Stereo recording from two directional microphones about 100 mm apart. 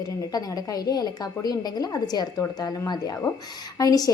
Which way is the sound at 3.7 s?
40° left (ahead or behind).